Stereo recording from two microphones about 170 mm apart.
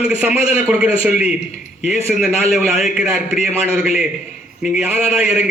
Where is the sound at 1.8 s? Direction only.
40° left (ahead or behind).